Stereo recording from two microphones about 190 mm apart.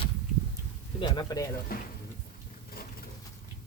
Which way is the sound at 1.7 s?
50° left (ahead or behind).